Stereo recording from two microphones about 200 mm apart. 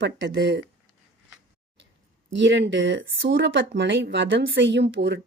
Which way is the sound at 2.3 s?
65° right (ahead or behind).